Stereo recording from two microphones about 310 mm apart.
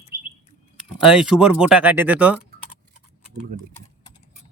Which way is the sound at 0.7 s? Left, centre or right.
Centre.